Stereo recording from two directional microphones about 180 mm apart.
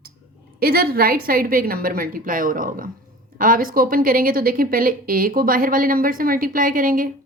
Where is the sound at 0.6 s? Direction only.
55° right (ahead or behind).